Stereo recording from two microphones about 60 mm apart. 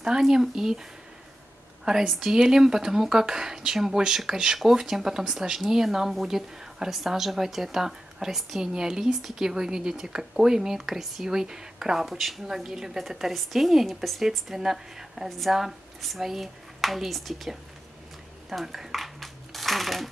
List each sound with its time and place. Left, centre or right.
0.0 s speech: centre
1.9 s speech: centre
18.5 s a sound: centre